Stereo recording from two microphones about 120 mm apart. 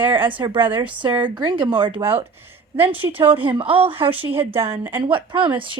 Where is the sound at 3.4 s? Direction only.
45° right (ahead or behind).